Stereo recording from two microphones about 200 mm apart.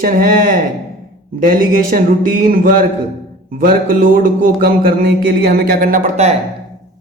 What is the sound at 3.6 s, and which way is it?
Music, 45° right (ahead or behind).